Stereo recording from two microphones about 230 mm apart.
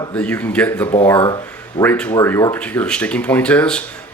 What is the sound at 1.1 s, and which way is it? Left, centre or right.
Speech, centre.